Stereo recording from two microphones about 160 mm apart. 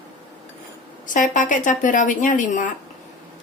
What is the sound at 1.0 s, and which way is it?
Speech, 55° left (ahead or behind).